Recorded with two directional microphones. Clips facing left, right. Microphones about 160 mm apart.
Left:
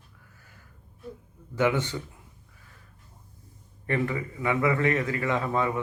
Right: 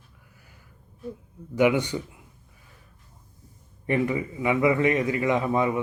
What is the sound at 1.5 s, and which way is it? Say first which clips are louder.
Speech: right 4 dB; 15° right (ahead or behind).